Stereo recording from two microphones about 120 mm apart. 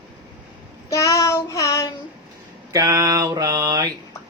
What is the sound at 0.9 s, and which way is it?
Child singing, 30° left (ahead or behind).